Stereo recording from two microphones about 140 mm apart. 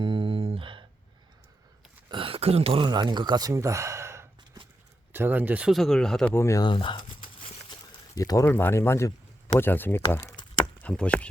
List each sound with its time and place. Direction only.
0.0 s a sound: 35° right (ahead or behind)
2.0 s speech: 40° right (ahead or behind); by 6.3 s 5° left (ahead or behind)
6.3 s speech: 20° left (ahead or behind)
6.7 s a sound: 35° left (ahead or behind)
8.4 s speech: 15° left (ahead or behind)
10.8 s speech: 10° left (ahead or behind)